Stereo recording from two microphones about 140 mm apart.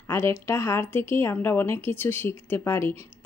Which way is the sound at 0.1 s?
20° left (ahead or behind).